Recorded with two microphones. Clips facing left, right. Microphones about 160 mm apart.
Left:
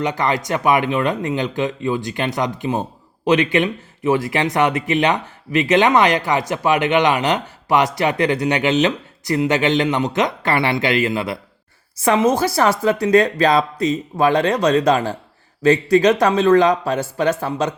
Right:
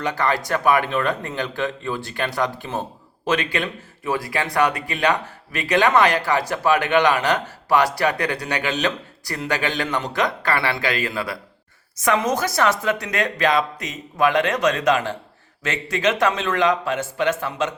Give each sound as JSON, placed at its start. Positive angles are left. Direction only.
{"t": 0.0, "sound": "speech", "side_deg": 20}